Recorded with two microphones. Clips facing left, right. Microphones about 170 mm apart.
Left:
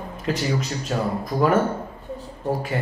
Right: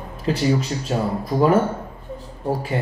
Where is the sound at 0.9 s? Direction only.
30° right (ahead or behind).